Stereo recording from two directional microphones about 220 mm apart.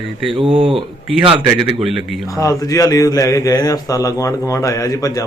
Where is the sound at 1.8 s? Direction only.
Centre (ahead or behind).